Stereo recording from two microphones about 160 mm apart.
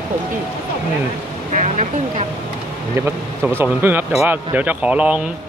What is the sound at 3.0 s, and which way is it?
Speech, 15° right (ahead or behind).